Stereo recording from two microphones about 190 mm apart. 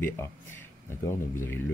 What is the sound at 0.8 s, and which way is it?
Speech, 15° left (ahead or behind).